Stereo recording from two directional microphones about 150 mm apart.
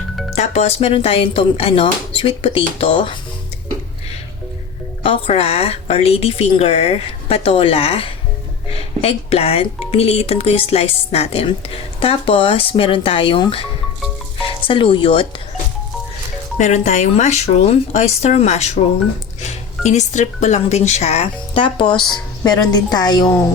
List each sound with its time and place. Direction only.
0.3 s speech: 45° left (ahead or behind)
5.0 s speech: 40° left (ahead or behind)
16.6 s speech: 50° left (ahead or behind); by 23.4 s 25° left (ahead or behind)